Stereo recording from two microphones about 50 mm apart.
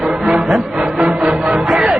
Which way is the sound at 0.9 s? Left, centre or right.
Right.